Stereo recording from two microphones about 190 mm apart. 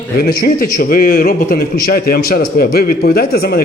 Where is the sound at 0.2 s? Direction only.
55° left (ahead or behind).